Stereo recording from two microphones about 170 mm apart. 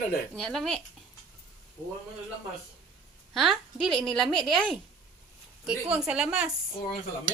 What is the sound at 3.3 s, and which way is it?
A woman's voice, centre (ahead or behind).